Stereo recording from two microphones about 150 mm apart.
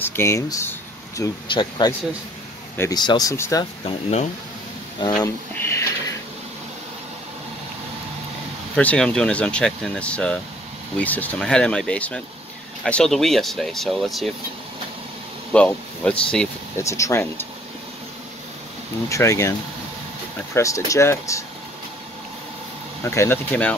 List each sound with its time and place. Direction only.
0.0 s speech: 15° left (ahead or behind)
1.5 s speech: 30° left (ahead or behind)
2.9 s speech: 30° left (ahead or behind)
3.8 s speech: 45° left (ahead or behind)
5.0 s speech: 25° left (ahead or behind)
5.6 s a sound: 15° left (ahead or behind)
8.7 s speech: 5° left (ahead or behind)
15.5 s speech: 10° left (ahead or behind)
16.7 s speech: 20° left (ahead or behind)
19.0 s speech: 20° left (ahead or behind)
20.5 s speech: 20° left (ahead or behind)
23.0 s speech: 15° left (ahead or behind)